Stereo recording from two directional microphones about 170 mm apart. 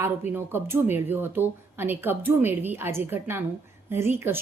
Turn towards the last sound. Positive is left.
turn(degrees=-15)  # may be behind; listen again after turning